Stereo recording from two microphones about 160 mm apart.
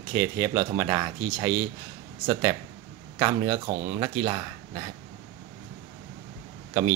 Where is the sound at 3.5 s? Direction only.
40° right (ahead or behind).